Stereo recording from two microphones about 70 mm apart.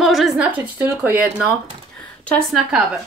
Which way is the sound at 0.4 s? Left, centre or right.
Right.